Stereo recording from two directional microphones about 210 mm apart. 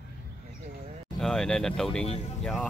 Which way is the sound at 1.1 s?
Centre (ahead or behind).